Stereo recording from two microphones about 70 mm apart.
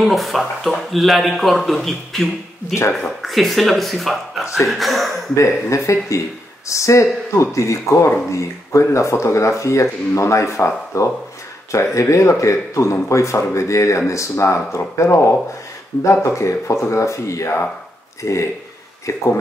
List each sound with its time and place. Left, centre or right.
0.0 s speech: centre
5.3 s speech: left